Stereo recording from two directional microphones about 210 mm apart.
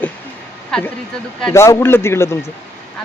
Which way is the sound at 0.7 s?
5° left (ahead or behind).